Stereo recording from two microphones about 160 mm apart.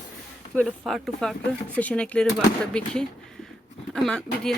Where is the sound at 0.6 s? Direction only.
Centre (ahead or behind).